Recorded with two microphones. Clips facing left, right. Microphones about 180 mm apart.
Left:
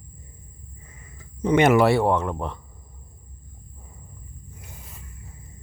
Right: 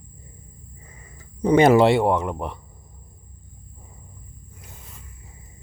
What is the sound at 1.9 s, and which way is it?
Speech, 15° right (ahead or behind).